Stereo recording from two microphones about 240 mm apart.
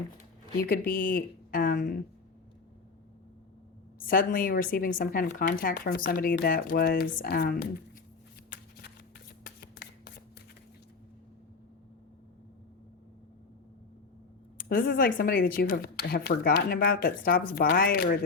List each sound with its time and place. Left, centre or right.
0.7 s speech: left
4.0 s speech: left
9.4 s a sound: left
14.6 s speech: left